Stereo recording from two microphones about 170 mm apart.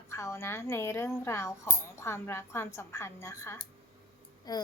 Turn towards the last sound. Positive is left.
turn(degrees=25)  # may be behind; listen again after turning